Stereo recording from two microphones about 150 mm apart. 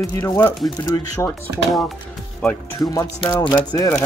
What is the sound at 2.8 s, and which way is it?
Speech, 25° left (ahead or behind).